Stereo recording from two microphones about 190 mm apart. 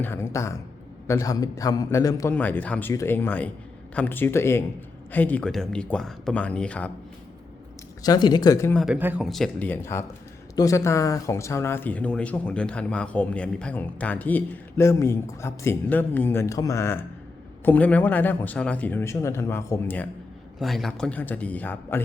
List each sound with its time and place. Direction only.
0.0 s speech: 15° left (ahead or behind)
8.0 s speech: 20° left (ahead or behind)
8.8 s speech: 5° right (ahead or behind); by 20.1 s 10° left (ahead or behind)
20.6 s speech: centre (ahead or behind)